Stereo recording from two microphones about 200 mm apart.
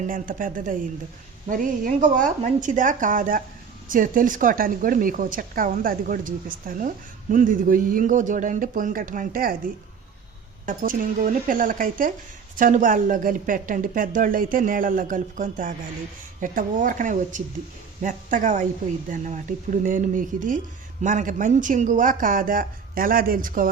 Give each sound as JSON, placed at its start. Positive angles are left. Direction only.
{"t": 0.1, "sound": "a woman's voice", "side_deg": -40}
{"t": 10.7, "sound": "a woman's voice", "side_deg": -45}